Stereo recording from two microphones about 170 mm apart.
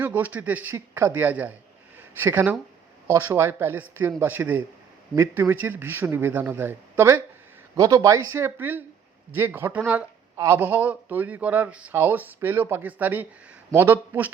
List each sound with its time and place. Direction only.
0.0 s speech: 10° right (ahead or behind)